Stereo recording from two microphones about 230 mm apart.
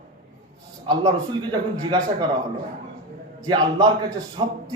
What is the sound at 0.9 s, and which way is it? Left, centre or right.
A man's voice, centre.